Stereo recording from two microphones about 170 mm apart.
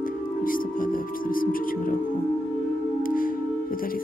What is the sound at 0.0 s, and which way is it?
Music, 55° left (ahead or behind).